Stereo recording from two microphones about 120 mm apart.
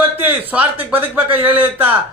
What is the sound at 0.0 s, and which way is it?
Speech, 15° right (ahead or behind).